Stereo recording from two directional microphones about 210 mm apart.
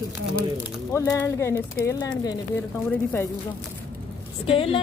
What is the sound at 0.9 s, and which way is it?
Speech, 10° left (ahead or behind).